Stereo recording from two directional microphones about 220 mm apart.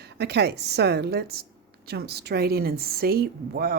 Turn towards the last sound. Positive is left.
turn(degrees=-45)  # may be behind; listen again after turning